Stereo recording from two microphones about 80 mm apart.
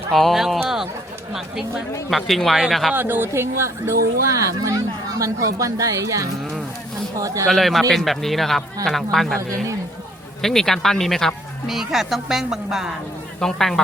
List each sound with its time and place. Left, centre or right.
0.1 s speech: centre
2.0 s speech: centre
2.9 s a woman's voice: right
7.4 s speech: centre